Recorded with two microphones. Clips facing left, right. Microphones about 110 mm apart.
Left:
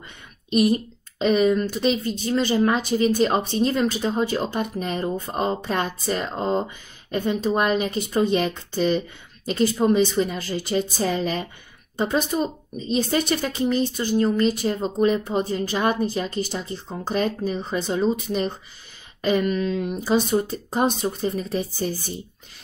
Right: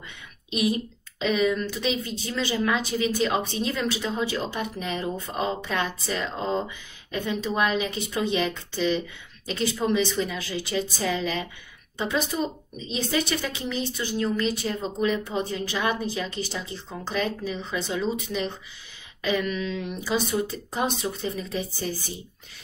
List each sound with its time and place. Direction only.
0.5 s a woman's voice: 40° left (ahead or behind)
19.2 s speech: 45° left (ahead or behind)